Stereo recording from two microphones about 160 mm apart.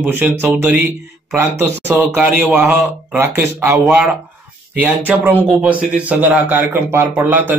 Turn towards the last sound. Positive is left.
turn(degrees=-10)  # may be behind; listen again after turning